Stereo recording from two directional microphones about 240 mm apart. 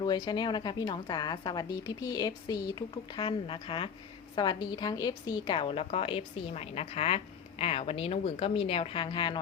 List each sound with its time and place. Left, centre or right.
0.0 s a woman's voice: centre